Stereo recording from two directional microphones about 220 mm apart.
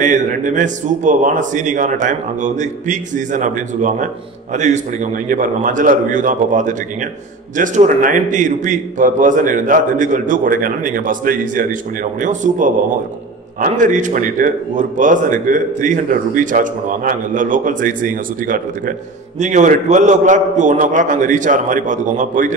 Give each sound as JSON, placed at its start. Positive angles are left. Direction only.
{"t": 0.0, "sound": "a man's voice", "side_deg": -35}